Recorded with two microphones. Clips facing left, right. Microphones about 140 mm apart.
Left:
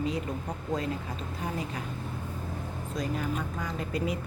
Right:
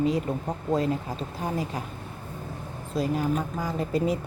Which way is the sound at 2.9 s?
30° right (ahead or behind).